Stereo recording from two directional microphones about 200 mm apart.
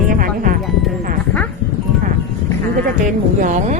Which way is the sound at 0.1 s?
45° right (ahead or behind).